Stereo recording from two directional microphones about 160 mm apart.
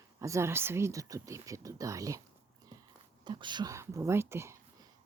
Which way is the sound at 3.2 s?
30° right (ahead or behind).